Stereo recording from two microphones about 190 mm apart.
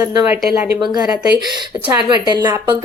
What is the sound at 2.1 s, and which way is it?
Speech, 20° right (ahead or behind).